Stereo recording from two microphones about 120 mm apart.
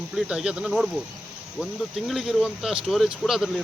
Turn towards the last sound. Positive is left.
turn(degrees=0)  # may be behind; listen again after turning